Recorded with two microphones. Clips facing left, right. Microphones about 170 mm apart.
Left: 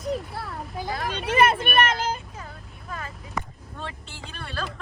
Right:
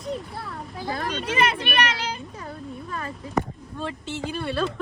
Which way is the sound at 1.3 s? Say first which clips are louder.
Left 4 dB; 50° left (ahead or behind).